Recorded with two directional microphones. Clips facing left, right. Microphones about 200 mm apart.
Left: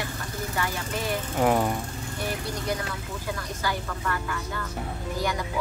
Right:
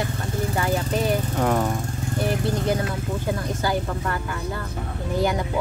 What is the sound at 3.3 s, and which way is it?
Speech, 30° right (ahead or behind).